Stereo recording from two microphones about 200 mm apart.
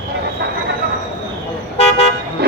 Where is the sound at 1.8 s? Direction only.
30° left (ahead or behind).